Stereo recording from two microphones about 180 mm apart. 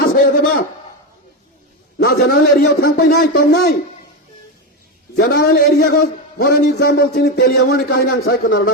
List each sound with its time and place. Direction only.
0.2 s a sound: 55° left (ahead or behind)
2.0 s a man's voice: 60° left (ahead or behind)
5.1 s a man's voice: 65° left (ahead or behind)